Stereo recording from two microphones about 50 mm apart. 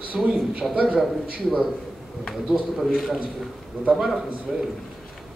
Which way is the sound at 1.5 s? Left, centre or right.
Centre.